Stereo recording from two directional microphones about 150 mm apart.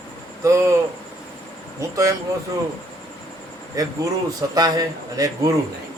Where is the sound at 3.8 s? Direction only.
25° right (ahead or behind).